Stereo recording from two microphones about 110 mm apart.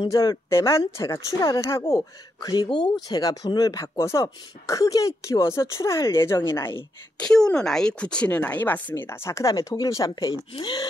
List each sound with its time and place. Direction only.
0.1 s speech: 30° left (ahead or behind)
2.4 s speech: 40° left (ahead or behind); by 6.7 s 25° left (ahead or behind)
7.2 s speech: 5° left (ahead or behind); by 10.9 s 40° left (ahead or behind)